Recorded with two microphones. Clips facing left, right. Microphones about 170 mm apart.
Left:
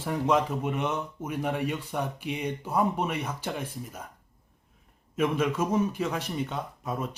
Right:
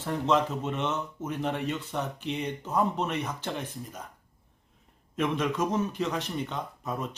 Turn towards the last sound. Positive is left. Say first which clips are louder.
# left 1 dB
turn(degrees=10)  # may be behind; listen again after turning